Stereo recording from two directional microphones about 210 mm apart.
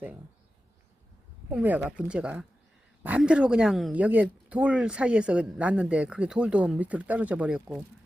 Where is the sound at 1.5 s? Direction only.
10° right (ahead or behind).